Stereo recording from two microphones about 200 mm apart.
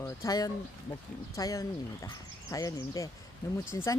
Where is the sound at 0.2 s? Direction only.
20° left (ahead or behind).